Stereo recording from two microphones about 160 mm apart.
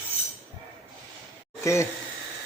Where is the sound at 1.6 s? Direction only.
15° left (ahead or behind).